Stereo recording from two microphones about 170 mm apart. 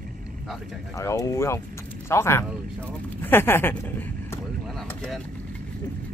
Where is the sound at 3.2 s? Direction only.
10° left (ahead or behind).